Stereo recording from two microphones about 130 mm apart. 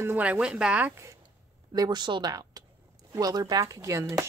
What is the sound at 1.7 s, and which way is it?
Speech, 30° right (ahead or behind).